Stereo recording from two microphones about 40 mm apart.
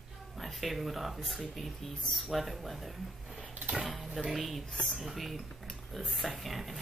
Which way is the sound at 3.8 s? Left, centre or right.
Centre.